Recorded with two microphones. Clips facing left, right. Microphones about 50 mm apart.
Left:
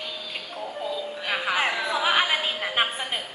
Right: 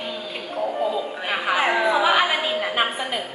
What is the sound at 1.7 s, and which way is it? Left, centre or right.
Speech, right.